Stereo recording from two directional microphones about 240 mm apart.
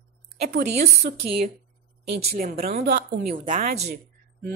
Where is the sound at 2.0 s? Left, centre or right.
Right.